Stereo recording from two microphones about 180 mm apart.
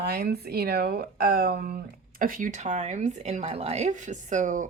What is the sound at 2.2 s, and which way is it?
A woman's voice, 50° right (ahead or behind).